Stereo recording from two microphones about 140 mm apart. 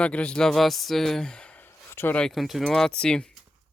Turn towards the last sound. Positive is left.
turn(degrees=5)  # may be behind; listen again after turning